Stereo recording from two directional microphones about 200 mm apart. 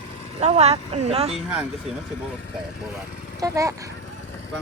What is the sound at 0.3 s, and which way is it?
Speech, 30° right (ahead or behind).